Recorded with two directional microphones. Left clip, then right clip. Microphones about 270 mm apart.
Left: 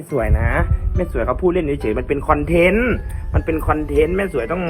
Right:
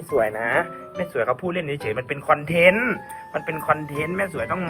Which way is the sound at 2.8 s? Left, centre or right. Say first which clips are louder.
Left 4 dB; centre.